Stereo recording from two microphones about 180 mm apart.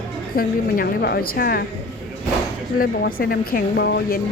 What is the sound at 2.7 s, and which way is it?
Speech, 55° left (ahead or behind).